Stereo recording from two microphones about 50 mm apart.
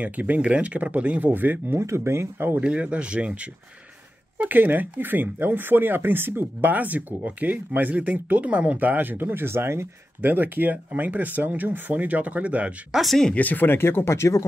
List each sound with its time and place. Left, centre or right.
0.0 s speech: right
1.3 s speech: right
1.8 s speech: right
2.6 s speech: right
4.4 s speech: right
10.2 s speech: right
12.9 s speech: centre
13.3 s speech: left
13.7 s speech: left